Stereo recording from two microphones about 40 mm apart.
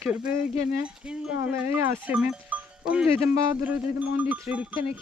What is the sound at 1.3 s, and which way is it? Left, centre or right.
Speech, right.